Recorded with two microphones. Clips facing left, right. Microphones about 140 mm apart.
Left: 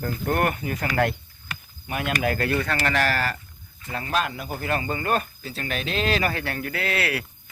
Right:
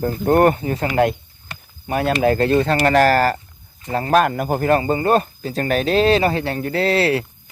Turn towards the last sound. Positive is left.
turn(degrees=-30)  # may be behind; listen again after turning